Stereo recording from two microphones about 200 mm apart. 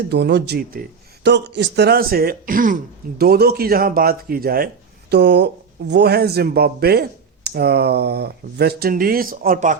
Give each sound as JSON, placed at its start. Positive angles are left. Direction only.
{"t": 0.1, "sound": "speech", "side_deg": -60}